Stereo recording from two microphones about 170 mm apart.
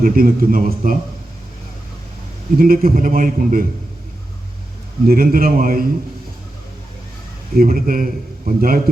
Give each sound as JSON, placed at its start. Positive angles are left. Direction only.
{"t": 0.0, "sound": "a man's voice", "side_deg": -55}
{"t": 2.6, "sound": "a man's voice", "side_deg": -55}
{"t": 5.0, "sound": "a man's voice", "side_deg": -55}
{"t": 7.5, "sound": "a man's voice", "side_deg": -60}